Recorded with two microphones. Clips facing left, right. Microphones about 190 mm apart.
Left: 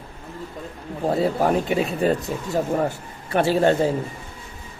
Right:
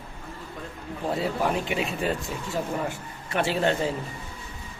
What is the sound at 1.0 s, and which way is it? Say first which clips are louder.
Speech: left 6 dB; 40° left (ahead or behind).